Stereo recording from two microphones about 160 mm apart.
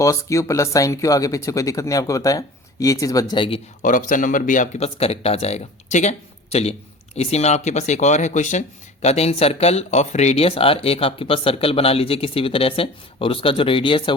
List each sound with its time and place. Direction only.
0.0 s speech: 20° left (ahead or behind)
3.8 s speech: 55° left (ahead or behind); by 14.1 s 30° left (ahead or behind)